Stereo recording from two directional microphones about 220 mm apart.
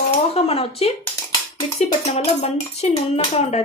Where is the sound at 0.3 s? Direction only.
25° left (ahead or behind).